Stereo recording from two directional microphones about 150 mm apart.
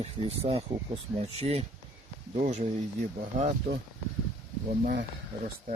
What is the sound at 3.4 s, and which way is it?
Speech, 55° right (ahead or behind).